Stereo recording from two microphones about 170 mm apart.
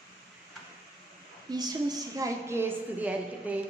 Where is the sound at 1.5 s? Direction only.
25° right (ahead or behind).